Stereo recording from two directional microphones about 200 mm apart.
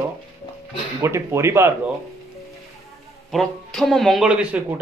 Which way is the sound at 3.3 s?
Centre (ahead or behind).